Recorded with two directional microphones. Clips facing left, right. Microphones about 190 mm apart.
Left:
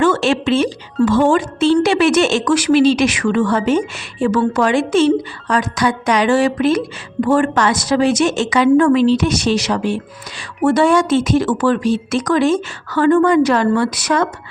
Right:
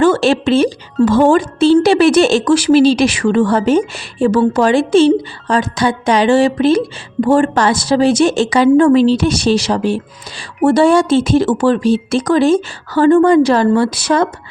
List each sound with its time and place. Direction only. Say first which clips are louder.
0.0 s speech: right 3 dB; 35° right (ahead or behind)